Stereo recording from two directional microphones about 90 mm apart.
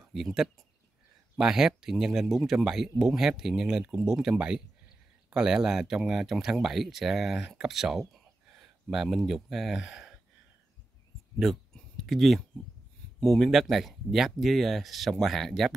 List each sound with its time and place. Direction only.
0.0 s speech: centre (ahead or behind)
11.7 s a sound: centre (ahead or behind)
13.2 s speech: 5° left (ahead or behind)